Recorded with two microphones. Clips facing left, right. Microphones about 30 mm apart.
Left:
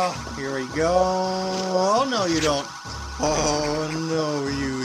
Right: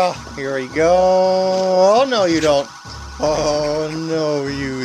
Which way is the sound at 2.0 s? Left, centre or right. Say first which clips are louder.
Right 7 dB; right.